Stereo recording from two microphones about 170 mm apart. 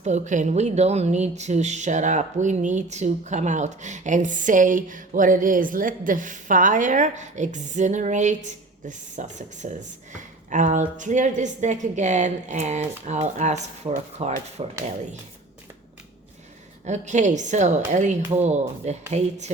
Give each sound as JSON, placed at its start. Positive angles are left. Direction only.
{"t": 0.0, "sound": "a woman's voice", "side_deg": -45}
{"t": 16.8, "sound": "a woman's voice", "side_deg": -45}